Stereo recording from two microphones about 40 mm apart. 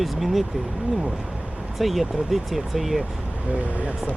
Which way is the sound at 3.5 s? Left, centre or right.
Right.